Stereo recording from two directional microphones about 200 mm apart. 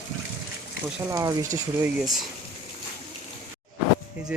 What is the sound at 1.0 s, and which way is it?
Speech, 15° right (ahead or behind).